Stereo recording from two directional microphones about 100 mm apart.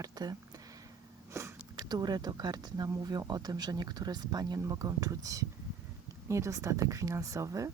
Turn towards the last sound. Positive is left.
turn(degrees=-35)  # may be behind; listen again after turning